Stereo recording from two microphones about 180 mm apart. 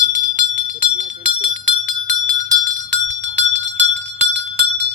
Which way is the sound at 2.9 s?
80° right.